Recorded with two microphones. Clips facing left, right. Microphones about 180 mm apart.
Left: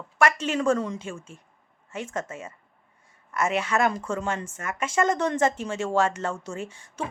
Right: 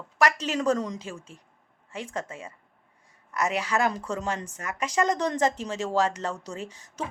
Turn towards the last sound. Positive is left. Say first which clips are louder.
# left 2 dB
turn(degrees=-35)  # may be behind; listen again after turning